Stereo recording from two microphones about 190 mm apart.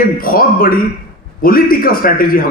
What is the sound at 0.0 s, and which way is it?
Speech, 50° left (ahead or behind).